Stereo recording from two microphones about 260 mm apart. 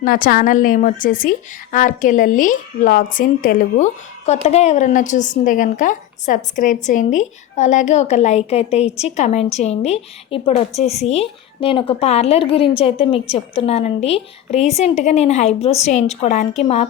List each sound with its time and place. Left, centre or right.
0.0 s a woman's voice: left